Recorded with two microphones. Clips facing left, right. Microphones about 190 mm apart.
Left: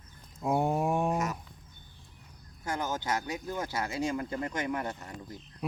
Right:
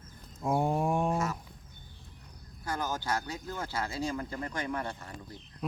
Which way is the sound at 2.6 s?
20° left (ahead or behind).